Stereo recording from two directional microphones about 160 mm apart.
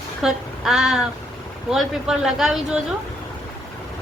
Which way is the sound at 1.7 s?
5° right (ahead or behind).